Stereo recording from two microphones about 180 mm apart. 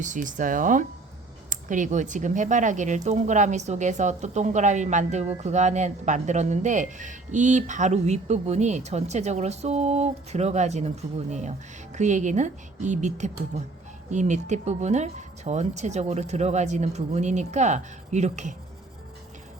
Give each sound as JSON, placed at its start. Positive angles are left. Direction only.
{"t": 0.0, "sound": "speech", "side_deg": -45}